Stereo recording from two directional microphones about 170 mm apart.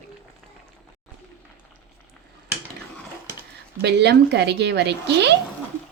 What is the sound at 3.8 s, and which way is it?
Speech, 85° right.